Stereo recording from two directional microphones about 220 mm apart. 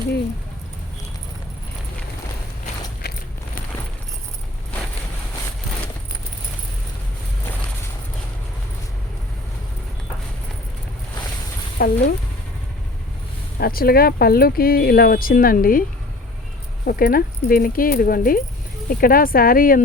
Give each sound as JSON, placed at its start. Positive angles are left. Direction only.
{"t": 3.0, "sound": "a sound", "side_deg": 45}
{"t": 11.8, "sound": "speech", "side_deg": 40}
{"t": 13.6, "sound": "speech", "side_deg": 45}
{"t": 16.8, "sound": "speech", "side_deg": 40}